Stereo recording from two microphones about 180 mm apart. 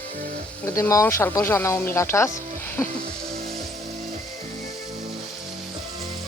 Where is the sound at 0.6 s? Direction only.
15° left (ahead or behind).